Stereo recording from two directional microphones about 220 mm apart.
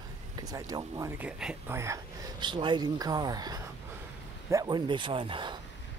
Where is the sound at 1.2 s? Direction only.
5° right (ahead or behind); by 5.5 s 20° right (ahead or behind).